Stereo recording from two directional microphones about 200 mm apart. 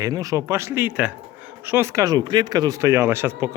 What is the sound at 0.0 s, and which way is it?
Speech, 15° right (ahead or behind).